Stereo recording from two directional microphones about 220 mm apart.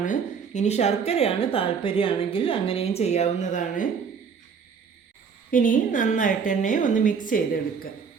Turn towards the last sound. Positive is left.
turn(degrees=40)  # may be behind; listen again after turning